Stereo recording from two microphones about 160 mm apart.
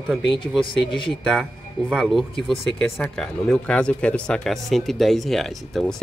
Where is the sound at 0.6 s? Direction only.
30° left (ahead or behind).